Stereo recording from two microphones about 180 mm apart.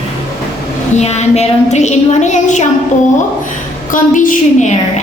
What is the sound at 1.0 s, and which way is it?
A woman's voice, 40° left (ahead or behind).